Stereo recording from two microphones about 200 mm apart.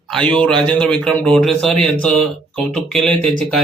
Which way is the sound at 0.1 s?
5° left (ahead or behind).